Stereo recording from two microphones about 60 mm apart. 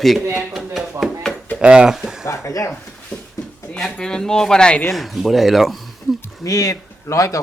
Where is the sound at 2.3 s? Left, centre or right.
Left.